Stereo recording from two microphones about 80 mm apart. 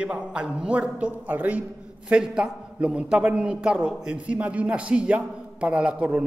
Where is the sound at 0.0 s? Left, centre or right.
Centre.